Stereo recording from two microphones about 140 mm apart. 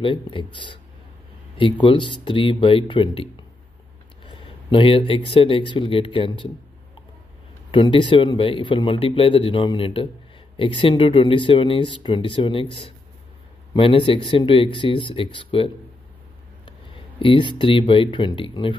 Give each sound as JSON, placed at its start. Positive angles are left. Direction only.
{"t": 0.0, "sound": "speech", "side_deg": 35}
{"t": 7.7, "sound": "speech", "side_deg": 35}
{"t": 13.7, "sound": "speech", "side_deg": 40}
{"t": 17.2, "sound": "speech", "side_deg": 35}